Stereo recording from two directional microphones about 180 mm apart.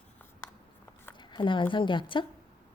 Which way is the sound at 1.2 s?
25° left (ahead or behind).